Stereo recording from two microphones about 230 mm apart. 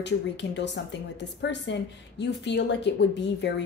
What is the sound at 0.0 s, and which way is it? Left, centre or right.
A woman's voice, left.